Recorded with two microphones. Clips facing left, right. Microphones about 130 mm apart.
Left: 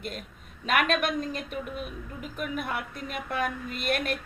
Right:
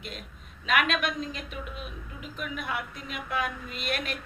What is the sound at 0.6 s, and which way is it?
Speech, 45° left (ahead or behind).